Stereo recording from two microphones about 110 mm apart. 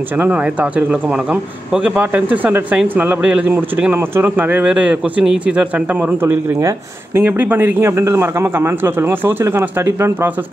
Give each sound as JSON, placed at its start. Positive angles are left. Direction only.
{"t": 0.2, "sound": "a man's voice", "side_deg": -15}